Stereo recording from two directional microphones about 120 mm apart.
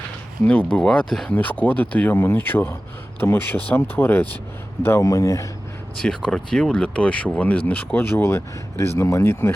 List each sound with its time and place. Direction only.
0.7 s speech: 5° left (ahead or behind); by 5.5 s 25° left (ahead or behind)
6.0 s speech: 5° left (ahead or behind)